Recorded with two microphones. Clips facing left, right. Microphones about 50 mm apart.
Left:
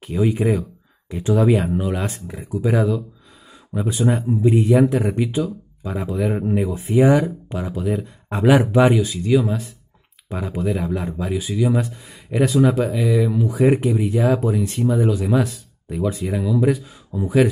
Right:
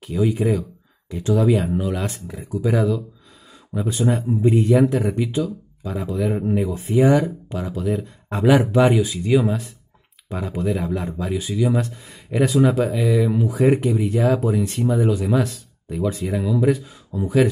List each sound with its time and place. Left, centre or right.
0.0 s speech: left
8.9 s speech: centre
10.3 s speech: centre
17.1 s speech: centre